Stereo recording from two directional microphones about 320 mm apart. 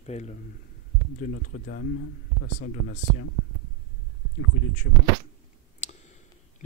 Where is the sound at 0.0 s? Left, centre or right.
Left.